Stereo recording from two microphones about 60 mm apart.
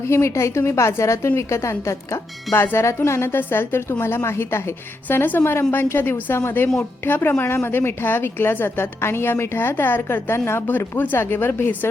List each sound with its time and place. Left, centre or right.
0.1 s speech: left
5.0 s speech: left
10.7 s speech: left